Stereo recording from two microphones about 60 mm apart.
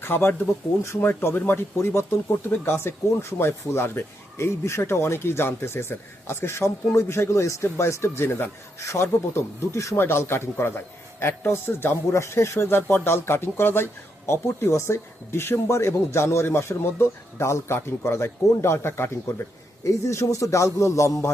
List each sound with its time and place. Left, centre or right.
0.0 s speech: left
19.8 s a man's voice: left